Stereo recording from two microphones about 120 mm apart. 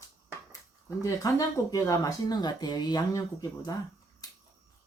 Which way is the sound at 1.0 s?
30° left (ahead or behind).